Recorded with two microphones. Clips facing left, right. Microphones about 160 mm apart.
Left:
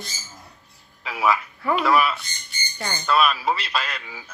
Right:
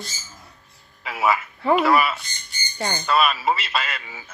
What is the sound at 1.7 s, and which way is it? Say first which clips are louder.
A man's voice: right 1 dB; centre (ahead or behind).